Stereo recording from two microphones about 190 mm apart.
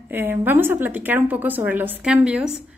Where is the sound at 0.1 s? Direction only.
10° right (ahead or behind).